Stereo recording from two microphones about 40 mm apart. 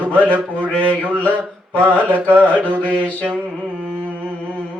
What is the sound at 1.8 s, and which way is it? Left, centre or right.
Mantra, right.